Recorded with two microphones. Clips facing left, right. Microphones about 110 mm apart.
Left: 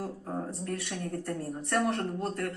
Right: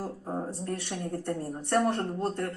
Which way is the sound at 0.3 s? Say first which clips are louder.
Right 3 dB; 20° right (ahead or behind).